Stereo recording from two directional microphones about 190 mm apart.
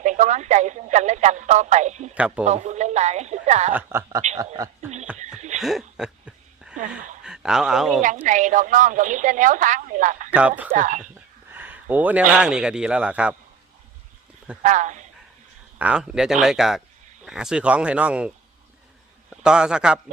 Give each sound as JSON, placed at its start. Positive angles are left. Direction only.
{"t": 0.0, "sound": "a woman's voice", "side_deg": -40}
{"t": 2.1, "sound": "a woman's voice", "side_deg": -5}
{"t": 2.4, "sound": "a sound", "side_deg": -35}
{"t": 3.7, "sound": "a woman's voice", "side_deg": -10}
{"t": 5.5, "sound": "a sound", "side_deg": 0}
{"t": 7.3, "sound": "speech", "side_deg": -5}
{"t": 8.0, "sound": "a woman's voice", "side_deg": -40}
{"t": 10.3, "sound": "a woman's voice", "side_deg": -5}
{"t": 10.7, "sound": "speech", "side_deg": -40}
{"t": 11.5, "sound": "speech", "side_deg": -10}
{"t": 14.6, "sound": "a woman's voice", "side_deg": -40}
{"t": 15.8, "sound": "speech", "side_deg": -5}
{"t": 19.3, "sound": "a man's voice", "side_deg": -5}